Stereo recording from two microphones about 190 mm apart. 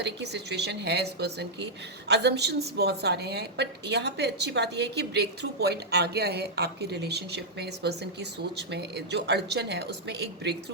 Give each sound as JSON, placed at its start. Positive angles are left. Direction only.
{"t": 0.0, "sound": "a woman's voice", "side_deg": -65}